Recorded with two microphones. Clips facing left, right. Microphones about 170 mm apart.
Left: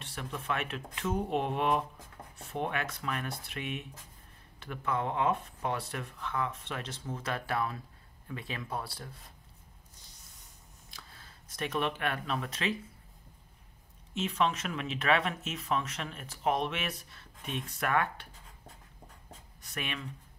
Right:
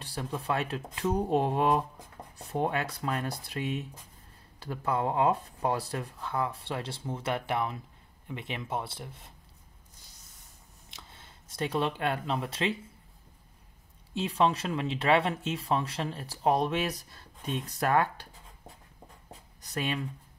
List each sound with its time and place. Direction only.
0.0 s speech: 35° right (ahead or behind)
10.9 s a sound: 25° right (ahead or behind)
12.0 s speech: 30° right (ahead or behind)
14.1 s speech: 35° right (ahead or behind)
19.6 s speech: 35° right (ahead or behind)